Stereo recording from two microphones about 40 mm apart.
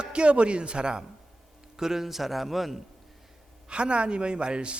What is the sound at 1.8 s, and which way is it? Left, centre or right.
A man's voice, centre.